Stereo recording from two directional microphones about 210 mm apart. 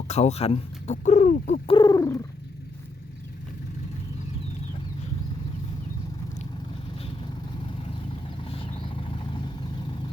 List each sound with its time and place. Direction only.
0.1 s speech: 30° left (ahead or behind)
8.4 s vehicle: 25° left (ahead or behind)